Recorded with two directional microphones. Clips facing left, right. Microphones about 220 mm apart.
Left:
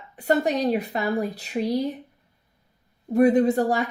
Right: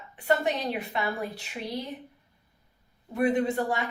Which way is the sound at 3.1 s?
40° left (ahead or behind).